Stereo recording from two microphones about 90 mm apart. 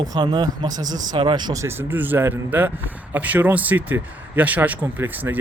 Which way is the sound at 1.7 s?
20° right (ahead or behind).